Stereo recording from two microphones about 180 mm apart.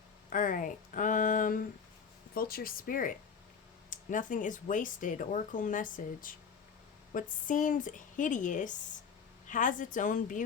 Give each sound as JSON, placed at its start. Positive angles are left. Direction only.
{"t": 0.3, "sound": "speech", "side_deg": 45}